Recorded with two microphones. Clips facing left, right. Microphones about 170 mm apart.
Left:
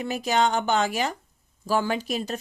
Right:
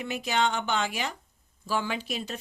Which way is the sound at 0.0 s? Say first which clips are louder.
Left 4 dB; 40° left (ahead or behind).